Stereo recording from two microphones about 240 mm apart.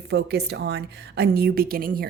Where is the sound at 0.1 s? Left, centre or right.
Right.